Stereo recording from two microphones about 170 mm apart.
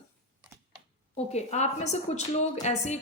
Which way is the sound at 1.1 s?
40° left (ahead or behind).